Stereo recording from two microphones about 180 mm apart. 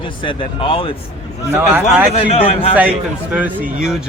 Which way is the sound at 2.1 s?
35° left (ahead or behind).